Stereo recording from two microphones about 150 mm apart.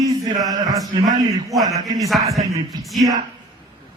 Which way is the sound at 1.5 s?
Centre (ahead or behind).